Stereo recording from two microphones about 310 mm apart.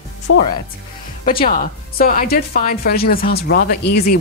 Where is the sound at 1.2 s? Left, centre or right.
Left.